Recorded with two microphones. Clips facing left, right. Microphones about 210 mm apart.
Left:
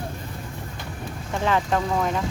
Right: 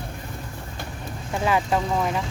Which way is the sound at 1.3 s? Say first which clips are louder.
Even; 10° right (ahead or behind).